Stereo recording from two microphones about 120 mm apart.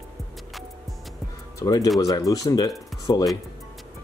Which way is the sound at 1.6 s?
30° left (ahead or behind).